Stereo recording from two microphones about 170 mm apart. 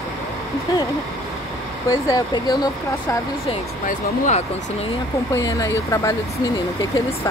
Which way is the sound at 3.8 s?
45° left (ahead or behind).